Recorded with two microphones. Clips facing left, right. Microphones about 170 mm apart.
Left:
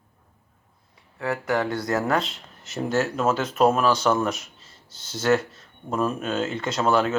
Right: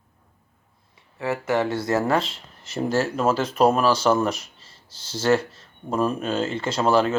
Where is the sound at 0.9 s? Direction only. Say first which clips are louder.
Right 1 dB; centre (ahead or behind).